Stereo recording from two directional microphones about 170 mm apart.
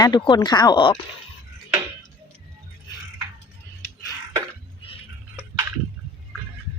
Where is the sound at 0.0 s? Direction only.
25° left (ahead or behind).